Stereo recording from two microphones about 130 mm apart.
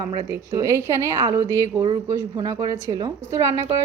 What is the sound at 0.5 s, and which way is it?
A woman's voice, 25° right (ahead or behind).